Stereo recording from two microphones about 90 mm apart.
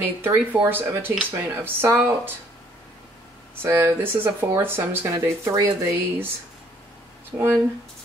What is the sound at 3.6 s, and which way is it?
Speech, 25° right (ahead or behind).